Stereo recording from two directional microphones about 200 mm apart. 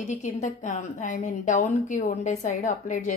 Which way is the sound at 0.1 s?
40° left (ahead or behind).